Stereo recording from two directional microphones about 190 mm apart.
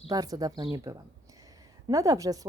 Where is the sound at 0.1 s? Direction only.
20° right (ahead or behind).